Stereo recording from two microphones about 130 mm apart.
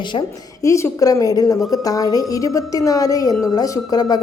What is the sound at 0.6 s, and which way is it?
A woman's voice, 25° left (ahead or behind).